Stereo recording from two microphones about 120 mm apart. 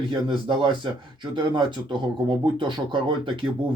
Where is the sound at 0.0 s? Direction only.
40° right (ahead or behind).